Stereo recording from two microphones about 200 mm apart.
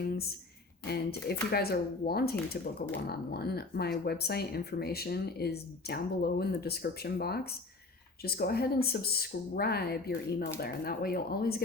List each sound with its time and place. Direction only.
0.9 s speech: 50° left (ahead or behind)